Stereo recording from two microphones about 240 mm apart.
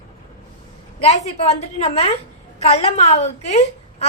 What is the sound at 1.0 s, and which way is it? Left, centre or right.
A woman's voice, left.